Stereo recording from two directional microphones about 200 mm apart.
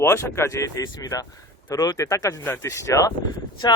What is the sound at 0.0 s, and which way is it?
Speech, 15° left (ahead or behind).